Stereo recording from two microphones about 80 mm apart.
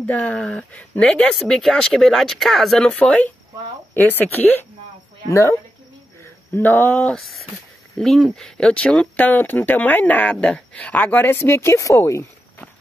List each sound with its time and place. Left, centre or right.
0.0 s speech: centre
6.5 s speech: left
7.2 s speech: centre; by 12.3 s left